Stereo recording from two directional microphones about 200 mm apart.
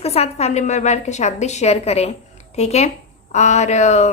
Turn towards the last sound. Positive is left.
turn(degrees=35)  # may be behind; listen again after turning